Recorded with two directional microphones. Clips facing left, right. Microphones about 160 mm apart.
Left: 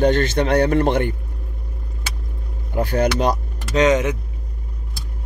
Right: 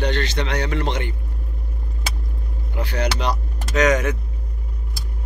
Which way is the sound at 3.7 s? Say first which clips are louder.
Left 2 dB; 25° left (ahead or behind).